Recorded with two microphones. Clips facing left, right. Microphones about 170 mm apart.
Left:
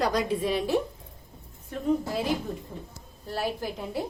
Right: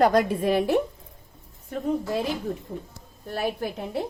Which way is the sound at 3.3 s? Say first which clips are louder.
Right 3 dB; 55° right (ahead or behind).